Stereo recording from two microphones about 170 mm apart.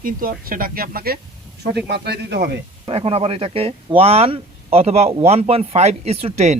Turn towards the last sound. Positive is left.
turn(degrees=-40)  # may be behind; listen again after turning